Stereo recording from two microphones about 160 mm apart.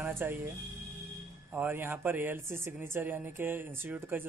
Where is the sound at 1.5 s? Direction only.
15° right (ahead or behind).